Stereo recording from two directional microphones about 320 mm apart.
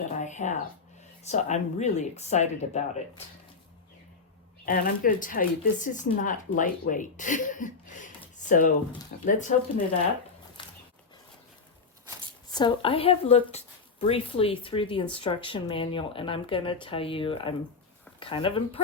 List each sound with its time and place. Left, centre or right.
0.2 s speech: left
4.6 s speech: left
12.5 s speech: centre